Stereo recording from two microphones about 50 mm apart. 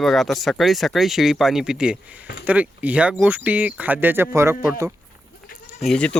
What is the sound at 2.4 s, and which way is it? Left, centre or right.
Speech, right.